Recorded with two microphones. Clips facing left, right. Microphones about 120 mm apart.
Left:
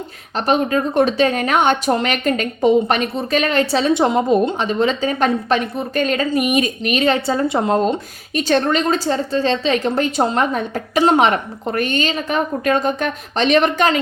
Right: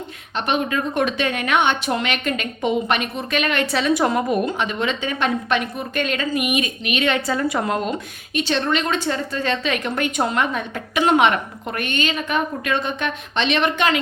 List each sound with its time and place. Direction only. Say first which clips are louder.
0.3 s a woman's voice: left 5 dB; 35° left (ahead or behind)
8.4 s a woman's voice: left 4 dB; 45° left (ahead or behind)